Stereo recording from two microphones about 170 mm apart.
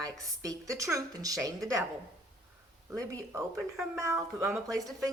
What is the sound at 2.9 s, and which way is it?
A woman's voice, 20° right (ahead or behind).